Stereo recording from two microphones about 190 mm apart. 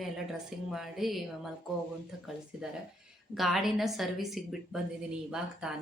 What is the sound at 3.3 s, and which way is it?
A woman's voice, centre (ahead or behind).